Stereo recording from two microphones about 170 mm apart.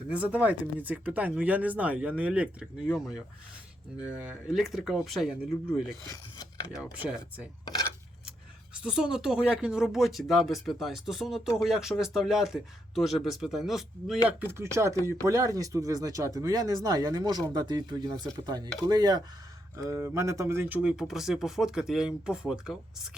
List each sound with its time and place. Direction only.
0.1 s speech: 10° right (ahead or behind)
6.4 s speech: 20° left (ahead or behind)
6.9 s speech: 10° right (ahead or behind)
7.6 s coin: 20° left (ahead or behind)
8.7 s speech: 5° right (ahead or behind)
14.3 s speech: 15° right (ahead or behind)